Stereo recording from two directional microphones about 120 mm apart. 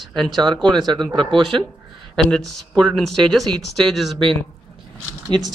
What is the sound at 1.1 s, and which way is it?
Speech, 40° right (ahead or behind).